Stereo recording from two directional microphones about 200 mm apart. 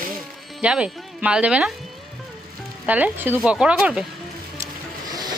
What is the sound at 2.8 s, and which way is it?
A woman's voice, 5° right (ahead or behind).